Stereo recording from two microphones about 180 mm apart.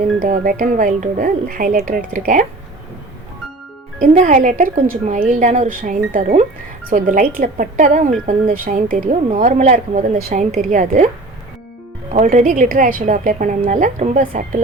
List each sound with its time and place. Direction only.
0.2 s a woman's voice: 50° right (ahead or behind)
4.0 s a woman's voice: 45° right (ahead or behind)